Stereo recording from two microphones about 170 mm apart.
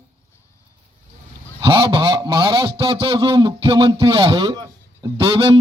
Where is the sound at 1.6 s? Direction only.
25° right (ahead or behind).